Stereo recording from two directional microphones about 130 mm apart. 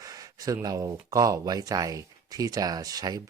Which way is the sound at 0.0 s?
30° right (ahead or behind).